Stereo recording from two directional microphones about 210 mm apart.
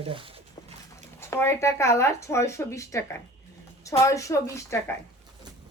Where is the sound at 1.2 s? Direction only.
10° left (ahead or behind).